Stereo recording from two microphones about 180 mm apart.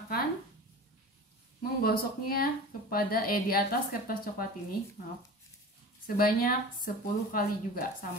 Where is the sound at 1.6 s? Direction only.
55° left (ahead or behind).